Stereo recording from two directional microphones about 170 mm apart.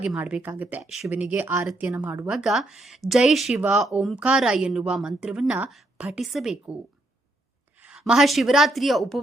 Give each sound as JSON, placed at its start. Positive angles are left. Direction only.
{"t": 0.0, "sound": "speech", "side_deg": -5}
{"t": 7.8, "sound": "a woman's voice", "side_deg": -5}